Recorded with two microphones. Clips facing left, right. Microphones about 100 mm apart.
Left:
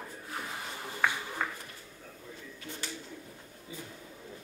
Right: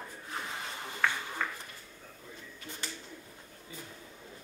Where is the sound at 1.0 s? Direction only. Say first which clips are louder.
Left 1 dB; 15° left (ahead or behind).